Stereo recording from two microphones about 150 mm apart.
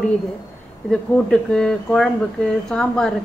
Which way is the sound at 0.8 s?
5° left (ahead or behind).